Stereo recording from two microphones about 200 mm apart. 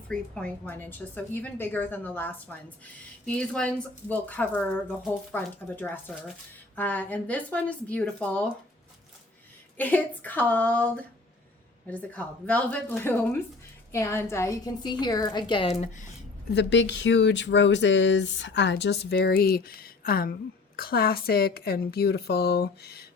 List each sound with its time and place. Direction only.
0.1 s speech: 5° left (ahead or behind)
9.7 s a woman's voice: 10° left (ahead or behind); by 16.0 s 35° left (ahead or behind)
16.5 s speech: 60° left (ahead or behind)